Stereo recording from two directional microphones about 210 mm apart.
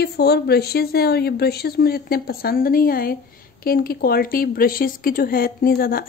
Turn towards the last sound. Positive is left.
turn(degrees=45)  # may be behind; listen again after turning